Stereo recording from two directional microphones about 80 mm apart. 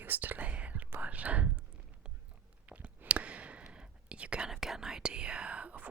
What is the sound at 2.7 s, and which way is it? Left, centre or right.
Whispering, centre.